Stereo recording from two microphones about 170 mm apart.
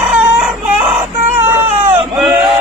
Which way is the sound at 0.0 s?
5° right (ahead or behind).